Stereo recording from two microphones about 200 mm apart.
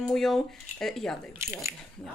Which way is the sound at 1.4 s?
15° right (ahead or behind).